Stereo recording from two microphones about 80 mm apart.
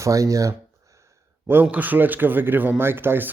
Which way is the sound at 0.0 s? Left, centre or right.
Right.